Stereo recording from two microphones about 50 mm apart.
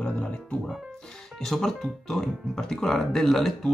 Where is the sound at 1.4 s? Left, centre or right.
Centre.